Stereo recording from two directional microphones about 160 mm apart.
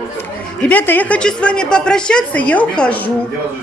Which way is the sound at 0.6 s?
10° left (ahead or behind).